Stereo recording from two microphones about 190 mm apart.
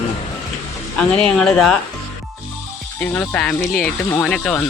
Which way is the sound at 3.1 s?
10° left (ahead or behind).